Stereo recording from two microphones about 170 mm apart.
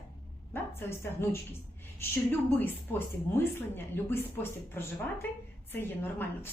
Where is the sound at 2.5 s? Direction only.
10° left (ahead or behind).